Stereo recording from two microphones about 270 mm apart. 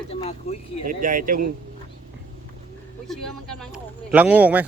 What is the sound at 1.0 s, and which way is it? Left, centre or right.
Speech, right.